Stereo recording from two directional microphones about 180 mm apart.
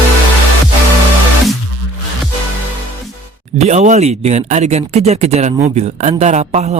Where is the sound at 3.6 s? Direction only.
40° right (ahead or behind).